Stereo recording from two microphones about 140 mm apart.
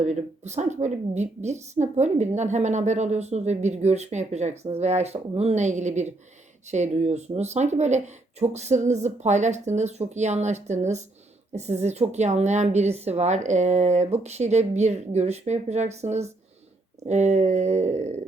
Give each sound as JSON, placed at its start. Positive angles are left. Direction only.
{"t": 0.0, "sound": "a woman's voice", "side_deg": -55}